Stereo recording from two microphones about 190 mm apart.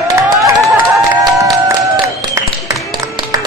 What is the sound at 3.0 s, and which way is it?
Music, 20° right (ahead or behind).